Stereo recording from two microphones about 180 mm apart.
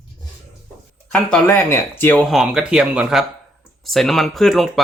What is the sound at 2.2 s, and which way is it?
Speech, centre (ahead or behind).